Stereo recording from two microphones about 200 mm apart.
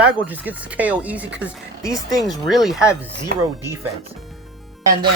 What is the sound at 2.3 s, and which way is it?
Speech, centre (ahead or behind).